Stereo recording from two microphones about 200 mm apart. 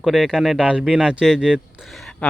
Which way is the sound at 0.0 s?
Centre (ahead or behind).